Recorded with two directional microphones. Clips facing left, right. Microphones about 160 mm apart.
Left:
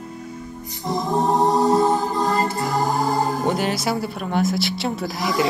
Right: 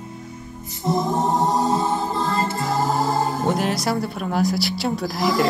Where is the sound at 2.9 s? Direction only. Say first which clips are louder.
Even; centre (ahead or behind).